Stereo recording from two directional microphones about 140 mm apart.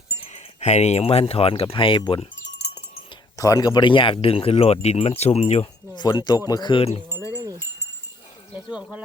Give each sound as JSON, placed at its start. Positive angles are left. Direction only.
{"t": 0.2, "sound": "speech", "side_deg": 55}
{"t": 3.3, "sound": "speech", "side_deg": 25}
{"t": 5.9, "sound": "speech", "side_deg": 30}